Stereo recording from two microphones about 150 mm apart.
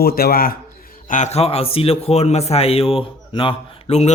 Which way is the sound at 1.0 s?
55° left (ahead or behind).